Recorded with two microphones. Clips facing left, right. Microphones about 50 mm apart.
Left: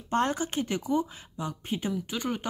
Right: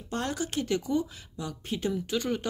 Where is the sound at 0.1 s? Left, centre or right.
Left.